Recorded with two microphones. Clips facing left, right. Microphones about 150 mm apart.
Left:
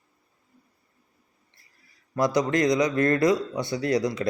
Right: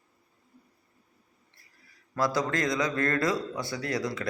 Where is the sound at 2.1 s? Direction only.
20° left (ahead or behind).